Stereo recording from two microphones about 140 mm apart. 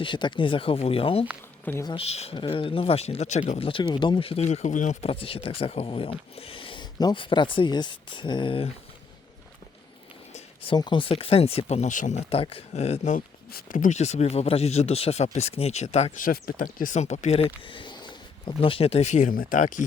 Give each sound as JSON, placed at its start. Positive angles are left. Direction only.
{"t": 0.0, "sound": "speech", "side_deg": 35}
{"t": 4.4, "sound": "speech", "side_deg": 60}
{"t": 10.8, "sound": "speech", "side_deg": 35}
{"t": 12.3, "sound": "speech", "side_deg": 40}
{"t": 13.1, "sound": "speech", "side_deg": 85}
{"t": 16.1, "sound": "speech", "side_deg": 90}